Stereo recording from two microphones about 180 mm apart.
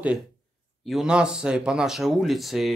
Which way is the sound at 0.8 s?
5° right (ahead or behind).